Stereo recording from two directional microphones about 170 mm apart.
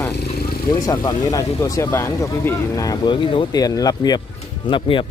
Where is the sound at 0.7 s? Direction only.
25° left (ahead or behind).